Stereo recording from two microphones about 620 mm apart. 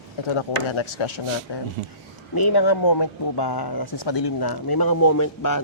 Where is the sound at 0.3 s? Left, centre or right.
Left.